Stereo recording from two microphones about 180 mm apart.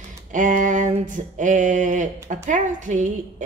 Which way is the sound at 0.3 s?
45° right (ahead or behind).